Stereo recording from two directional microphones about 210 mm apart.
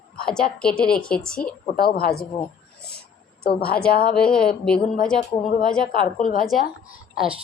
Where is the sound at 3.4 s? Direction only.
45° left (ahead or behind).